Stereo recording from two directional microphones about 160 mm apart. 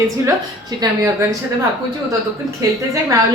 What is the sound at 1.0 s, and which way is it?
Speech, 15° right (ahead or behind).